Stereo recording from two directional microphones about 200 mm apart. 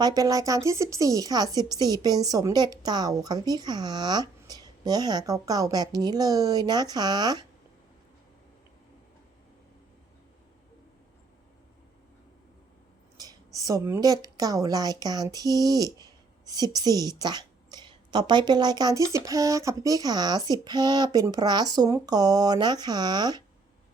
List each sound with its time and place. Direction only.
0.0 s a woman's voice: 20° right (ahead or behind)
13.1 s a woman's voice: 20° right (ahead or behind)